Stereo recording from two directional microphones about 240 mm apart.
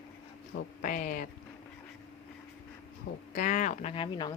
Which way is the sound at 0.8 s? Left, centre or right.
Left.